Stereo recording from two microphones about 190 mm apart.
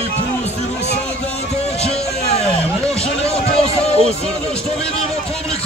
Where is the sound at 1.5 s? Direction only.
35° left (ahead or behind).